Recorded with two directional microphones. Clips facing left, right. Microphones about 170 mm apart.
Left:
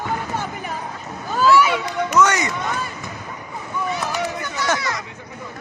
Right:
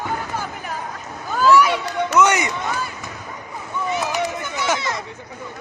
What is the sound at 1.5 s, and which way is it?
Run, 10° left (ahead or behind).